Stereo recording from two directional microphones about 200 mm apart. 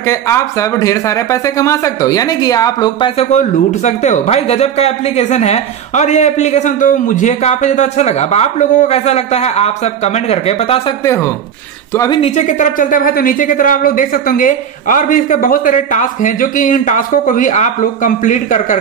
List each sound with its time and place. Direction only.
0.0 s speech: 15° left (ahead or behind)
3.3 s speech: 35° left (ahead or behind)
11.9 s speech: 15° left (ahead or behind)
12.2 s speech: 35° left (ahead or behind)